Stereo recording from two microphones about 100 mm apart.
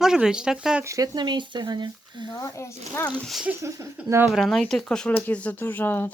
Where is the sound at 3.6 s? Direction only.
30° right (ahead or behind).